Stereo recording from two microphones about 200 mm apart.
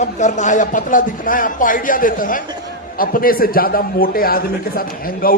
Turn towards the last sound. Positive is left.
turn(degrees=45)  # may be behind; listen again after turning